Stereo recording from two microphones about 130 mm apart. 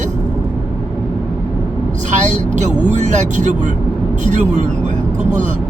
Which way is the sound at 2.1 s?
70° right (ahead or behind).